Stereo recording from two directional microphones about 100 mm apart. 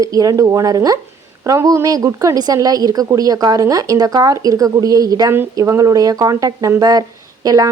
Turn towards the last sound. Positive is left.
turn(degrees=-40)  # may be behind; listen again after turning